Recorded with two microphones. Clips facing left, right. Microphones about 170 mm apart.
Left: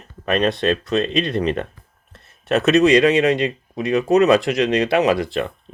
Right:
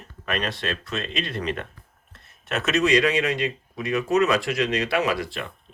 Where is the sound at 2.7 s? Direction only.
25° left (ahead or behind).